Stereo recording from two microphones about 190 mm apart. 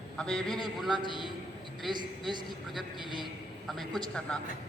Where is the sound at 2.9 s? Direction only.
25° left (ahead or behind).